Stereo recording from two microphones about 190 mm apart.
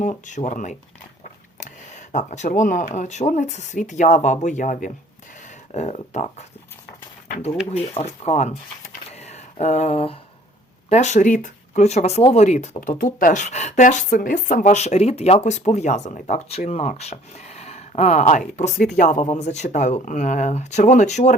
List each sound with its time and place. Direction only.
0.0 s speech: 40° left (ahead or behind)
7.7 s speech: 30° left (ahead or behind)
9.0 s a sound: 35° left (ahead or behind)
10.8 s speech: 35° left (ahead or behind)